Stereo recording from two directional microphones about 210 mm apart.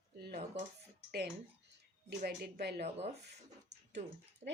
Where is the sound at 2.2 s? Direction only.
50° right (ahead or behind).